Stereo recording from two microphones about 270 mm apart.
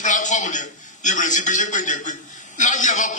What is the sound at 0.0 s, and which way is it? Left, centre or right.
A man's voice, left.